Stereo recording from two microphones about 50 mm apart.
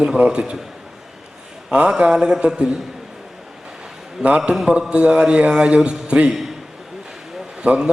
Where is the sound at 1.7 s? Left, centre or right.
Centre.